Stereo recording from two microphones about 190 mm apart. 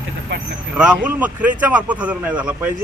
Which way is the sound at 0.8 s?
5° right (ahead or behind).